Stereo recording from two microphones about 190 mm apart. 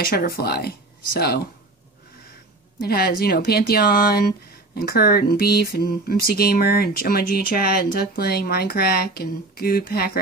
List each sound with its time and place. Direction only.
0.1 s speech: 55° left (ahead or behind)
2.8 s speech: 55° left (ahead or behind)